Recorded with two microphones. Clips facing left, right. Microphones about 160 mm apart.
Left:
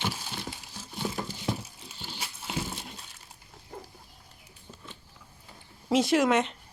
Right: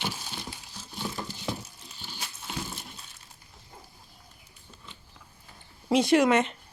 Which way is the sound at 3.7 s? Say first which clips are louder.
Left 8 dB; 65° left (ahead or behind).